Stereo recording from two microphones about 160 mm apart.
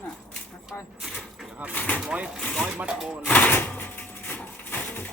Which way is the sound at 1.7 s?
10° left (ahead or behind).